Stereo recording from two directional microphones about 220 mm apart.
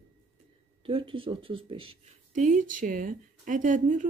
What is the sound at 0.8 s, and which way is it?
Speech, 25° right (ahead or behind).